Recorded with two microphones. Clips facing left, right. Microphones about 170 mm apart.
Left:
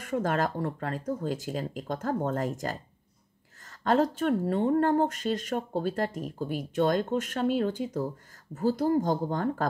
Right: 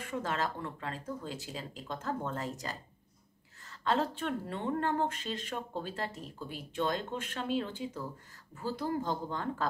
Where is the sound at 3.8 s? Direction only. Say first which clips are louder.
Left 7 dB; 45° left (ahead or behind).